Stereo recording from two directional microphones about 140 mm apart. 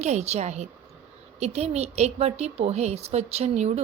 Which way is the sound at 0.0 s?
55° right (ahead or behind).